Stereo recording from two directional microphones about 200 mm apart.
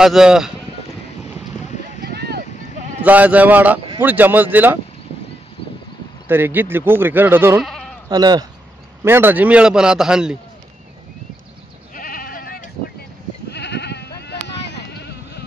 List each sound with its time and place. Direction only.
0.0 s a man's voice: 5° right (ahead or behind)
2.1 s a sound: 55° right (ahead or behind)
3.0 s speech: 5° right (ahead or behind)
6.2 s speech: 10° right (ahead or behind)
7.6 s sheep: centre (ahead or behind)
8.1 s a man's voice: 20° right (ahead or behind); by 10.3 s 5° right (ahead or behind)
11.9 s goat: 45° left (ahead or behind)
13.5 s goat: 55° left (ahead or behind)
14.2 s a sound: 60° left (ahead or behind)